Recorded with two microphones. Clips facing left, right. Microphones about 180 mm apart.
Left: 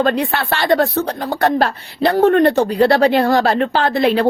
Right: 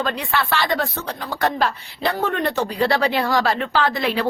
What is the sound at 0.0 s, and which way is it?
Speech, 50° left (ahead or behind).